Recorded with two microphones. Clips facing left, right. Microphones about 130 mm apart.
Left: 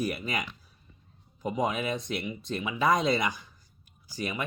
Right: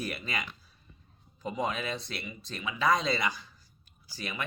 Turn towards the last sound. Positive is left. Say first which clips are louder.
# left 5 dB
turn(degrees=15)  # may be behind; listen again after turning